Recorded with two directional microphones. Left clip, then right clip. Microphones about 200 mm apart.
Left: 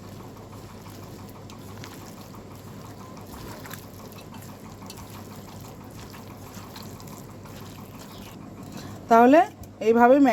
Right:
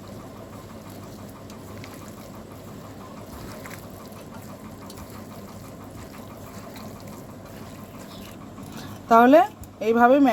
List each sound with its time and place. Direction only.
9.0 s speech: 5° left (ahead or behind)